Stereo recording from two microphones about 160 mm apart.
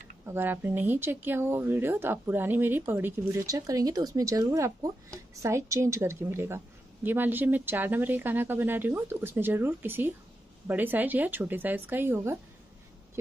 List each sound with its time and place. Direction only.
0.2 s a woman's voice: 15° right (ahead or behind)